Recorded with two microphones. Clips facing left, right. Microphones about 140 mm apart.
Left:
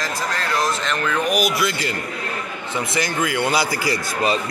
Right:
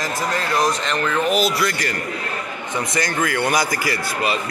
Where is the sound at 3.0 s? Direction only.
15° left (ahead or behind).